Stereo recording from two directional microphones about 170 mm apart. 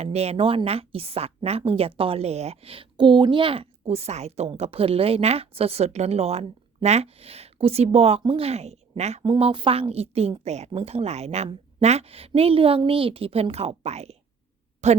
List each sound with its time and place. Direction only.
0.0 s a woman's voice: 40° right (ahead or behind)